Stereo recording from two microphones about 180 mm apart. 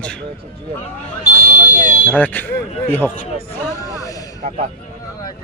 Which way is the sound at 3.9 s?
20° left (ahead or behind).